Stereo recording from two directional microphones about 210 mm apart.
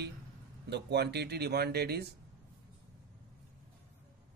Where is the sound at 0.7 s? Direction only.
55° right (ahead or behind).